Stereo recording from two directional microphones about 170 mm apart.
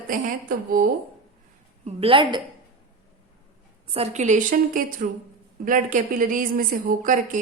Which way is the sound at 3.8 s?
35° right (ahead or behind).